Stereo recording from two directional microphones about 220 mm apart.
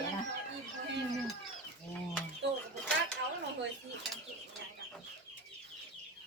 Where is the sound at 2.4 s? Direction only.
50° right (ahead or behind).